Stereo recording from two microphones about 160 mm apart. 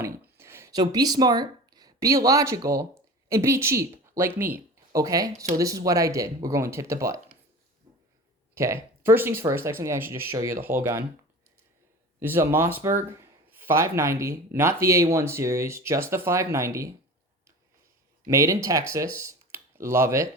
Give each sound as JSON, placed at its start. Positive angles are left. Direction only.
{"t": 0.0, "sound": "speech", "side_deg": -15}
{"t": 8.5, "sound": "speech", "side_deg": -15}
{"t": 12.2, "sound": "speech", "side_deg": -15}
{"t": 18.3, "sound": "speech", "side_deg": -20}